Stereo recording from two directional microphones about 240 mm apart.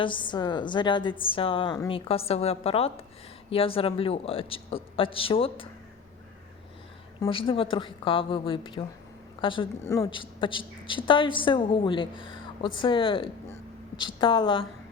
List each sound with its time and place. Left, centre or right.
0.0 s a woman's voice: centre
7.2 s a woman's voice: left